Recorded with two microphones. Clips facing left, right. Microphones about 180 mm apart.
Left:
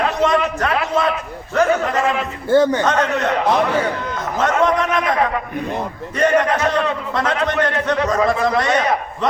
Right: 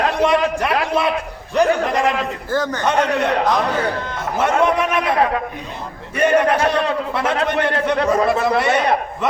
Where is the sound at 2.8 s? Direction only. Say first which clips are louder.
Even; 10° right (ahead or behind).